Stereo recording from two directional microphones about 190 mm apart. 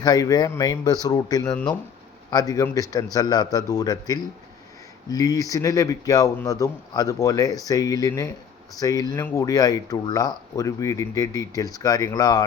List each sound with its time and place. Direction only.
0.0 s speech: 20° left (ahead or behind)
1.5 s speech: 5° left (ahead or behind)
2.3 s speech: 20° left (ahead or behind)